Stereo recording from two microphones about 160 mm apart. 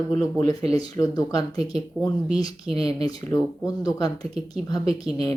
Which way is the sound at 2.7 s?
35° right (ahead or behind).